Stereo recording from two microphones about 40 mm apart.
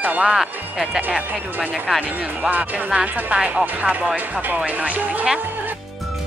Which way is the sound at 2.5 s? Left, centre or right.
Right.